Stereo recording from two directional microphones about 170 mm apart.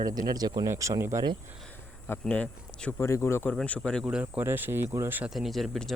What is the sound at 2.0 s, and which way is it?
Speech, 10° left (ahead or behind).